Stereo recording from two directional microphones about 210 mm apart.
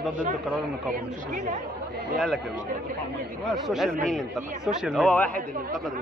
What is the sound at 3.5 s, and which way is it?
Speech, centre (ahead or behind).